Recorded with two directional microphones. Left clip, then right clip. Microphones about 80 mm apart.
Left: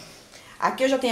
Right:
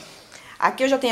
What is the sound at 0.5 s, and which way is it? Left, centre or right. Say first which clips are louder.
Speech: right 2 dB; centre.